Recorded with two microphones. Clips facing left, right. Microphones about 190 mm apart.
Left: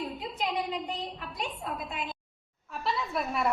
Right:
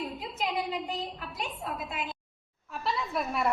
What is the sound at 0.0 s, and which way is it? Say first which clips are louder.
A woman's voice: even; centre (ahead or behind).